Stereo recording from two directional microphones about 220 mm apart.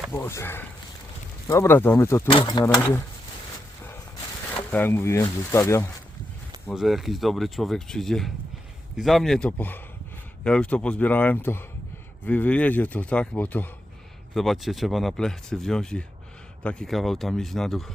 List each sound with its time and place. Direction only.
0.1 s speech: 10° left (ahead or behind)
4.7 s speech: 10° left (ahead or behind)
6.7 s speech: centre (ahead or behind)